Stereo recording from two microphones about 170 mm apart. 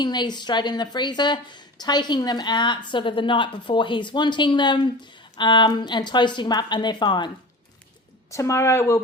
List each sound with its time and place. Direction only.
0.0 s a woman's voice: 25° left (ahead or behind)
8.3 s speech: 20° left (ahead or behind)